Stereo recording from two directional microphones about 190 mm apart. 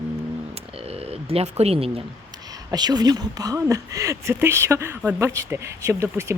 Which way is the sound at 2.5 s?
20° right (ahead or behind).